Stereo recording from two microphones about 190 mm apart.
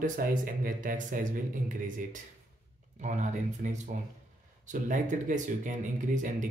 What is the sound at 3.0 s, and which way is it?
Speech, 40° right (ahead or behind).